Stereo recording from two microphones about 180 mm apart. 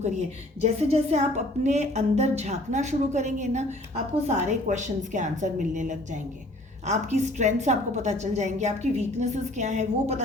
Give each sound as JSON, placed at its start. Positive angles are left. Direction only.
{"t": 0.0, "sound": "a woman's voice", "side_deg": -35}